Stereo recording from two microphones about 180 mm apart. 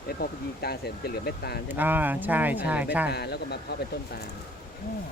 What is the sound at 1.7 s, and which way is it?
Speech, 10° right (ahead or behind).